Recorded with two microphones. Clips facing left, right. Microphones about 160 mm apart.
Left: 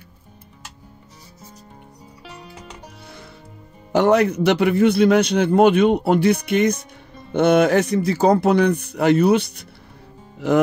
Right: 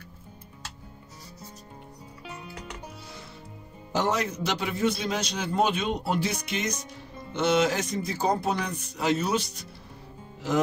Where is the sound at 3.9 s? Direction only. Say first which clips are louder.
Left 11 dB; 65° left (ahead or behind).